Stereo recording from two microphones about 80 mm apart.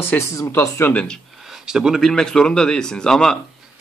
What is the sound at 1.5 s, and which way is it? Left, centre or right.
A man's voice, centre.